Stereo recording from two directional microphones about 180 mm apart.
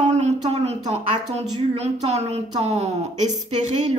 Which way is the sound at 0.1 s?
40° right (ahead or behind).